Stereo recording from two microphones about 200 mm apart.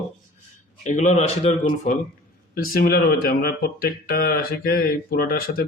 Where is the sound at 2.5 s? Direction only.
50° left (ahead or behind).